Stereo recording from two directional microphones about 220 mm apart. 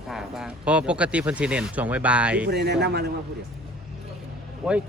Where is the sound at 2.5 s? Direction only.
50° right (ahead or behind).